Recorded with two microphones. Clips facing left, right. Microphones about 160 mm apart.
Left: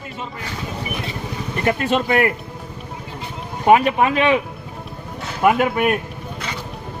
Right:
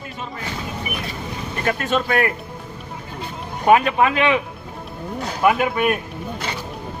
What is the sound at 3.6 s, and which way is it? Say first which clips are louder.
Speech: left 1 dB; 30° left (ahead or behind).